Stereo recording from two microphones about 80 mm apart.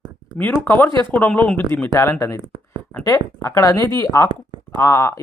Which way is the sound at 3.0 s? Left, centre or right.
Left.